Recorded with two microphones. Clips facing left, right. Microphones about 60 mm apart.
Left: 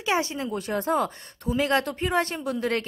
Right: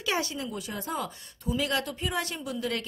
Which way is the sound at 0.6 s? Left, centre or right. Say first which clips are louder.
Left 11 dB; left.